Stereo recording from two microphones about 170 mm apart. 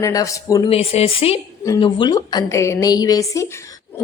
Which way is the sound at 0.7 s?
35° left (ahead or behind).